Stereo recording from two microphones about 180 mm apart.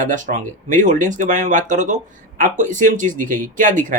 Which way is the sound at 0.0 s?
45° right (ahead or behind).